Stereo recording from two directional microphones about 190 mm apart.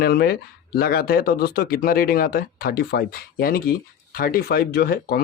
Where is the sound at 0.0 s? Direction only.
55° left (ahead or behind).